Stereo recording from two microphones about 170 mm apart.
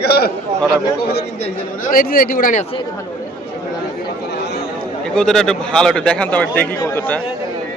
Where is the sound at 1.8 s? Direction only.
55° left (ahead or behind).